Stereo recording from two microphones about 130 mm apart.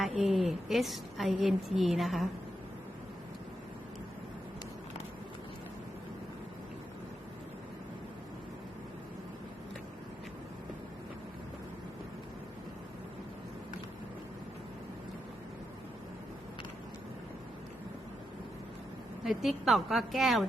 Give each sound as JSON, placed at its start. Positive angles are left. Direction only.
{"t": 0.2, "sound": "a woman's voice", "side_deg": 0}
{"t": 19.2, "sound": "a woman's voice", "side_deg": 0}